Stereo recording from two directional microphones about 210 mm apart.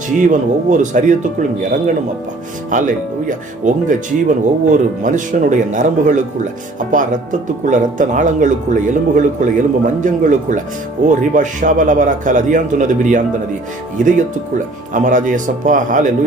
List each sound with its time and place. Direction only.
0.2 s speech: 35° right (ahead or behind)
2.6 s speech: 35° right (ahead or behind)